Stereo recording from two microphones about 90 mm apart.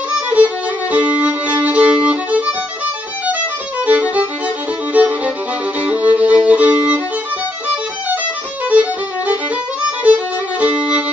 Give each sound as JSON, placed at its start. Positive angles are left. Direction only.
{"t": 0.1, "sound": "music", "side_deg": -15}
{"t": 0.9, "sound": "violin", "side_deg": -15}
{"t": 3.8, "sound": "violin", "side_deg": -15}
{"t": 4.9, "sound": "music", "side_deg": -15}
{"t": 5.9, "sound": "violin", "side_deg": -15}
{"t": 9.8, "sound": "violin", "side_deg": -15}